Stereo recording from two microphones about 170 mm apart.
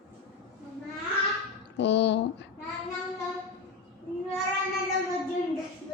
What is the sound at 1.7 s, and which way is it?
Speech, 90° left.